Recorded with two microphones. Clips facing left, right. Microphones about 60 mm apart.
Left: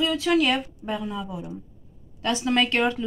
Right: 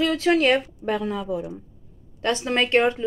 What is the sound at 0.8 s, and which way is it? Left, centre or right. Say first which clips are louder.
Speech: right 5 dB; right.